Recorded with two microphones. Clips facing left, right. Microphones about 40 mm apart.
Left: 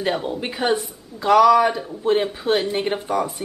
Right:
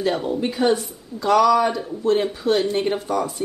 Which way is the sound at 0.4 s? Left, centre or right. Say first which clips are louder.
Right 2 dB; centre.